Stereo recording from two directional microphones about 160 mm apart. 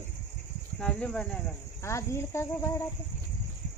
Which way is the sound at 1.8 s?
15° left (ahead or behind).